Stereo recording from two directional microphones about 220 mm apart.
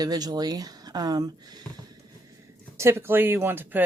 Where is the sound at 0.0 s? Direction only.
15° right (ahead or behind).